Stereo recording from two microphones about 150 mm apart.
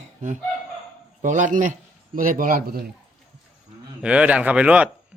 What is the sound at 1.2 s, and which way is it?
A man's voice, 55° right (ahead or behind).